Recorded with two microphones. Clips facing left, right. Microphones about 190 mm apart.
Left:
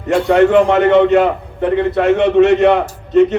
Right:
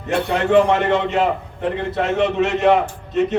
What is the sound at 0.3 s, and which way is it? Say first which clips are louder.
A man's voice: left 5 dB; 65° left (ahead or behind).